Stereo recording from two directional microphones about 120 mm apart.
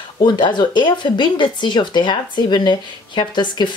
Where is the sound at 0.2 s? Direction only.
40° left (ahead or behind).